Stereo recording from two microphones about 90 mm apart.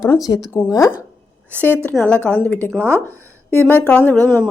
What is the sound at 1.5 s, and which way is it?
A woman's voice, 20° left (ahead or behind).